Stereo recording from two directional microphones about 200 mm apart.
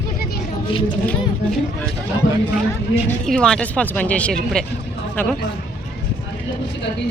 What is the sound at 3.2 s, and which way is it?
A woman's voice, 5° left (ahead or behind).